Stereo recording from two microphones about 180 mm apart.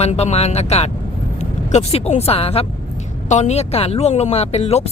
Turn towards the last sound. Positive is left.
turn(degrees=35)  # may be behind; listen again after turning